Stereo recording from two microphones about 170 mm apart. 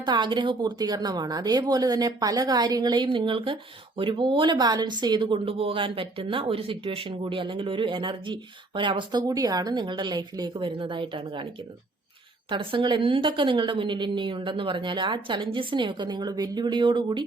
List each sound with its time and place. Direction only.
0.0 s a woman's voice: 25° right (ahead or behind)
12.5 s a woman's voice: 30° right (ahead or behind)